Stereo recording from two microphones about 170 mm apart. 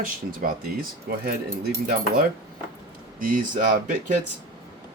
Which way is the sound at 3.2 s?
55° right (ahead or behind).